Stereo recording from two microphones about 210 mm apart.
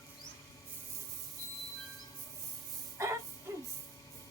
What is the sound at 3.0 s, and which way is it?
Music, 15° right (ahead or behind).